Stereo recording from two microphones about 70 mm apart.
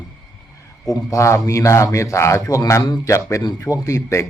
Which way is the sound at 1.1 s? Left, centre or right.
Left.